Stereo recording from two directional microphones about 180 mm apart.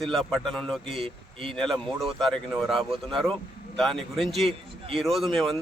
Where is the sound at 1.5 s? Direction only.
Centre (ahead or behind).